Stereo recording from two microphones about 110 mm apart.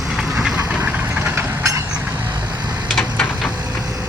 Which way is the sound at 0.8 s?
20° right (ahead or behind).